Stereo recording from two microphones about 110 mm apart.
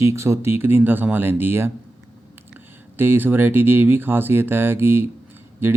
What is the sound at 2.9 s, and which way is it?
Speech, 20° right (ahead or behind).